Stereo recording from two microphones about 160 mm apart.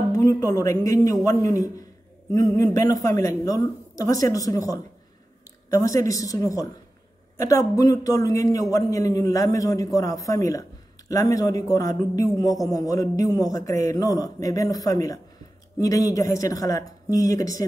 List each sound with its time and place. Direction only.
0.1 s a man's voice: 20° left (ahead or behind)
5.8 s a man's voice: 20° left (ahead or behind)